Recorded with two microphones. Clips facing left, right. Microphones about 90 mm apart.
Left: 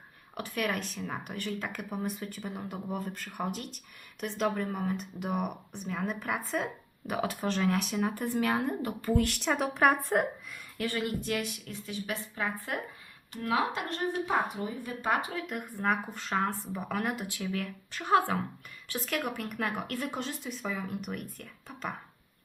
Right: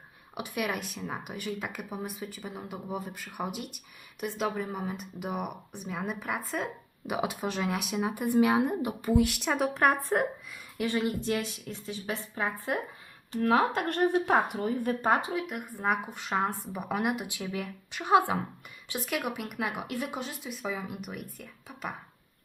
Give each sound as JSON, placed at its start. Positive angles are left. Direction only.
{"t": 0.3, "sound": "speech", "side_deg": -10}
{"t": 10.8, "sound": "a woman's voice", "side_deg": -20}
{"t": 13.3, "sound": "speech", "side_deg": -45}
{"t": 15.0, "sound": "speech", "side_deg": -30}
{"t": 15.3, "sound": "speech", "side_deg": -10}